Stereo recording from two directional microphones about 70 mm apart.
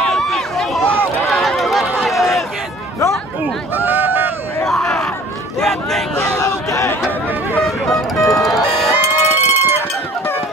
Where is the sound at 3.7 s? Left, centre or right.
Right.